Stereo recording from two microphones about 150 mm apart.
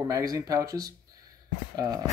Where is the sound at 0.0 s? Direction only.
25° right (ahead or behind).